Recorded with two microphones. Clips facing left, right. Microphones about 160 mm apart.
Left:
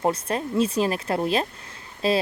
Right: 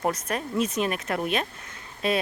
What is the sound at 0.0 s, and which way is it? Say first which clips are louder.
Speech: left 3 dB; 30° left (ahead or behind).